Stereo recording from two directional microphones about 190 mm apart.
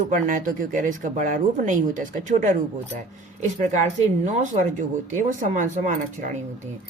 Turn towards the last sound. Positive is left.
turn(degrees=-45)  # may be behind; listen again after turning